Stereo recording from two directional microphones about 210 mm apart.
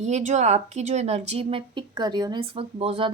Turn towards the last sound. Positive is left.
turn(degrees=-30)  # may be behind; listen again after turning